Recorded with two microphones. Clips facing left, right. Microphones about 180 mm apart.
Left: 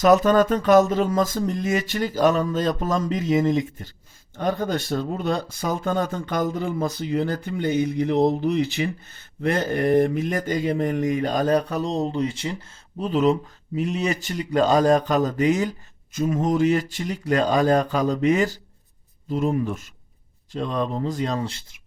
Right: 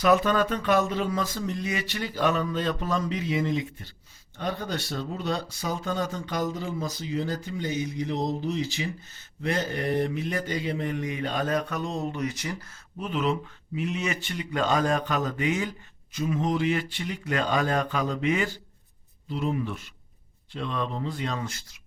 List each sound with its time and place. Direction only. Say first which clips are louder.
0.0 s speech: left 6 dB; 45° left (ahead or behind)